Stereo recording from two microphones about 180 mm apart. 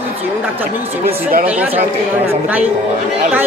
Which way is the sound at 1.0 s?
55° right (ahead or behind).